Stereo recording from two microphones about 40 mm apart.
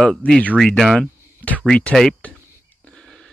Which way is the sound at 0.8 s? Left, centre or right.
Centre.